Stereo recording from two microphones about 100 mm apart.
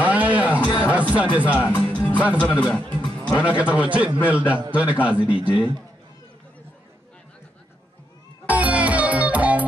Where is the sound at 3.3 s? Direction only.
15° right (ahead or behind).